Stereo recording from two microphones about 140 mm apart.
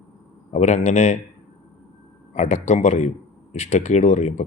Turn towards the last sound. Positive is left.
turn(degrees=55)  # may be behind; listen again after turning